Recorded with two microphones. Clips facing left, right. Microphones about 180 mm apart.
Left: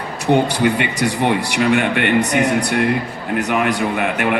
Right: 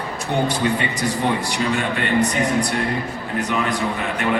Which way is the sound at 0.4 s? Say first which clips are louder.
Left 3 dB; 70° left (ahead or behind).